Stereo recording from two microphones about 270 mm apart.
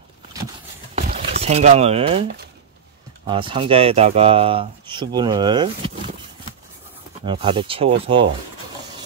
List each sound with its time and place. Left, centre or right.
0.9 s a sound: right
3.3 s speech: centre
7.2 s speech: centre